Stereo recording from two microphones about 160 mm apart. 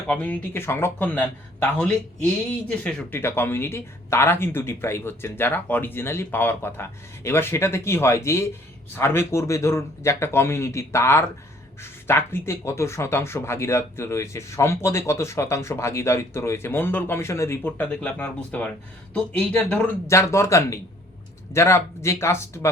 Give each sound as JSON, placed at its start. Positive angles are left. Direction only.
{"t": 0.1, "sound": "speech", "side_deg": 10}
{"t": 20.1, "sound": "speech", "side_deg": 20}